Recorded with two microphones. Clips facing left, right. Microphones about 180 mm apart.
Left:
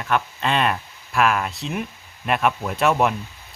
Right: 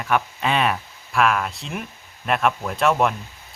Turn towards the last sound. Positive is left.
turn(degrees=0)  # may be behind; listen again after turning